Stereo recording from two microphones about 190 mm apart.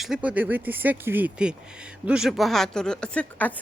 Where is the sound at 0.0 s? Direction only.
5° right (ahead or behind).